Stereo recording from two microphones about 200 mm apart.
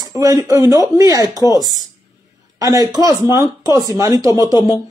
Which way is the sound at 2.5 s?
20° right (ahead or behind).